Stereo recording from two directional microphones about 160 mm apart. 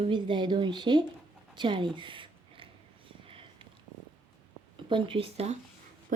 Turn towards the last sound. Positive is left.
turn(degrees=-40)  # may be behind; listen again after turning